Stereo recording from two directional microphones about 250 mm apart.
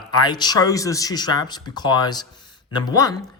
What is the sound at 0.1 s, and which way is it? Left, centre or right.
Speech, centre.